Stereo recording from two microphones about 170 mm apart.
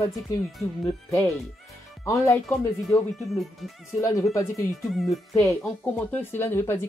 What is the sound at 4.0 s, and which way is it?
Speech, 20° left (ahead or behind).